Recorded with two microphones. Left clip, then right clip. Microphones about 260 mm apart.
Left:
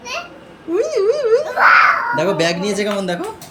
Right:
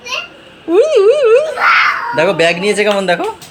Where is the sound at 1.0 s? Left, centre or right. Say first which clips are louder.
Right 4 dB; centre.